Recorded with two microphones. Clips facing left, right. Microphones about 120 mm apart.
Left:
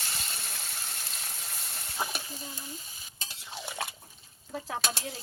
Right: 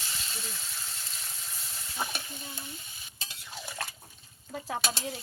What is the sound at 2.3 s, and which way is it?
Stir, 40° left (ahead or behind).